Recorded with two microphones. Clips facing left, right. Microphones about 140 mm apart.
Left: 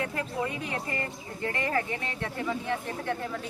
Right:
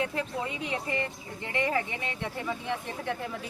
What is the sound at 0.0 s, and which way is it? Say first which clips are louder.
Speech: even; 20° right (ahead or behind).